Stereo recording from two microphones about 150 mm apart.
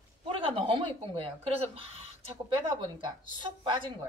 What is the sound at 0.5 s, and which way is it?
A woman's voice, 35° right (ahead or behind).